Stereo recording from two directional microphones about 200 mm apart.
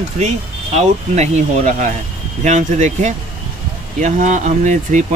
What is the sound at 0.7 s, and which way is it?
Speech, 35° right (ahead or behind).